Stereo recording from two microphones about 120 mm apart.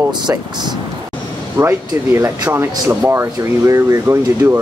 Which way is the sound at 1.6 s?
25° right (ahead or behind).